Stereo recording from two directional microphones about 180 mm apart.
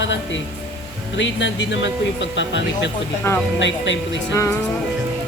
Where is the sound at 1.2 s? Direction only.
90° left.